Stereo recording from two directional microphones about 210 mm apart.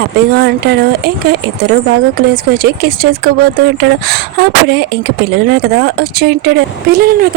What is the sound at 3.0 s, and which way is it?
Speech, 45° right (ahead or behind).